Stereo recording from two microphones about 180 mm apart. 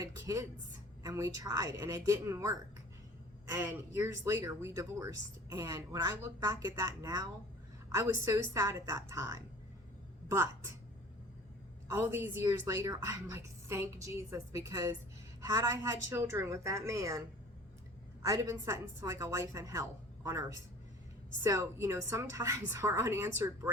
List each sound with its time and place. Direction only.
0.0 s a woman's voice: 20° right (ahead or behind)
11.9 s speech: 15° right (ahead or behind)